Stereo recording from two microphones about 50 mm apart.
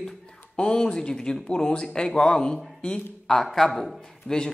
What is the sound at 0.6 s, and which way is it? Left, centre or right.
Speech, centre.